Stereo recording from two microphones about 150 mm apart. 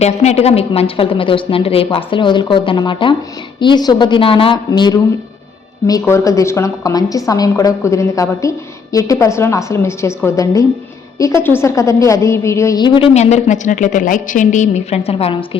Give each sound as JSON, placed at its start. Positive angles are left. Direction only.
{"t": 0.0, "sound": "a woman's voice", "side_deg": 45}
{"t": 13.1, "sound": "a woman's voice", "side_deg": 55}